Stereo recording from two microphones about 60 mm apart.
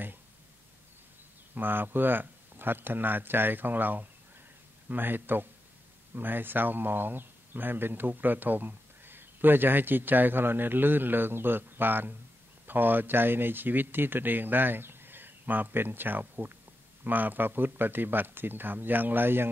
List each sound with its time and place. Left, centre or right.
1.5 s speech: right